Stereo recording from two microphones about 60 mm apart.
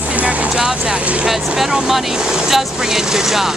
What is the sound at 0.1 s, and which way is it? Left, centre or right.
Vehicle, right.